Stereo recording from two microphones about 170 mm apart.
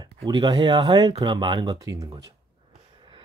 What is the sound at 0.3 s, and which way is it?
Speech, 25° right (ahead or behind).